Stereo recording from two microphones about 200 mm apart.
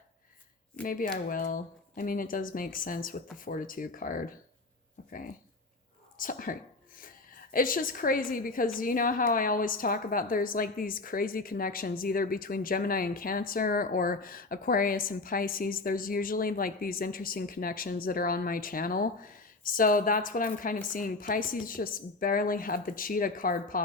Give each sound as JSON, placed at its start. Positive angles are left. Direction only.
{"t": 0.9, "sound": "a woman's voice", "side_deg": 45}
{"t": 6.1, "sound": "a woman's voice", "side_deg": 45}